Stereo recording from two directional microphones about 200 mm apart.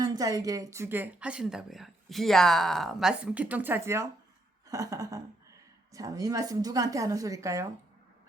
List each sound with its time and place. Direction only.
0.0 s a woman's voice: 20° right (ahead or behind)